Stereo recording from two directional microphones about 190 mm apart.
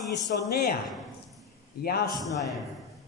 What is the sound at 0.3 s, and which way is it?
Speech, 55° left (ahead or behind).